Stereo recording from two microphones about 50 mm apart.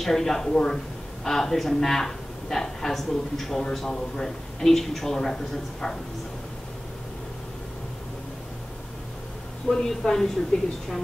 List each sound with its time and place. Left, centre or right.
0.0 s a woman's voice: centre
9.7 s a woman's voice: centre